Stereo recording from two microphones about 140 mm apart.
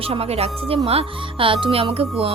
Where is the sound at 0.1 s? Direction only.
45° right (ahead or behind).